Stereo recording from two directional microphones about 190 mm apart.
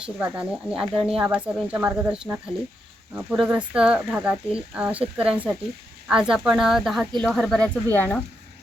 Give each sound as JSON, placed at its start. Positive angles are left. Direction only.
{"t": 0.0, "sound": "speech", "side_deg": -5}